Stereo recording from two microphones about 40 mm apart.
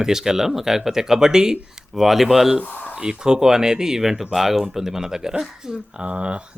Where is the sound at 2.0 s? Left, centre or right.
Centre.